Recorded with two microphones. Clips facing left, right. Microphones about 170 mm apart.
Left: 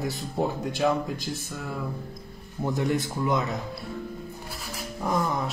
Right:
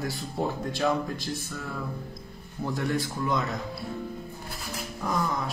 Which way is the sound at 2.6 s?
20° left (ahead or behind).